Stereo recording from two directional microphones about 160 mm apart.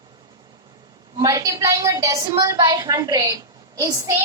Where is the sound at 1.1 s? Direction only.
20° right (ahead or behind).